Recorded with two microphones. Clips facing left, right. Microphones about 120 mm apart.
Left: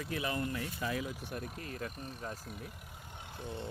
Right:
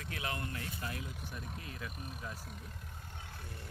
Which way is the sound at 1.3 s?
45° left (ahead or behind).